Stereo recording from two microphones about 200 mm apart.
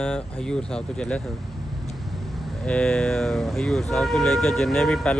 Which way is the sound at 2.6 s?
5° left (ahead or behind).